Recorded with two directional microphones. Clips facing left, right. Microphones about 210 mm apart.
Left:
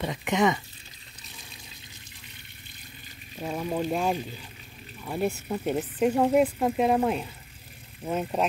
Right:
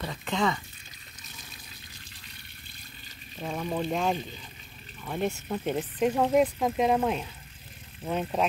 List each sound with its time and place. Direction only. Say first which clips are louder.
0.0 s speech: left 4 dB; 15° left (ahead or behind)
3.3 s speech: left 2 dB; 10° left (ahead or behind)